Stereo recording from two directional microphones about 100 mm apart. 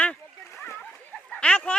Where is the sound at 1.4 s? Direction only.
10° left (ahead or behind).